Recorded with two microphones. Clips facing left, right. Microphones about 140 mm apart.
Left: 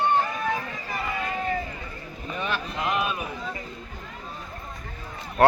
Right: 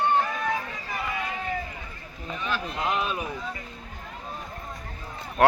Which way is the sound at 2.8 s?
30° right (ahead or behind).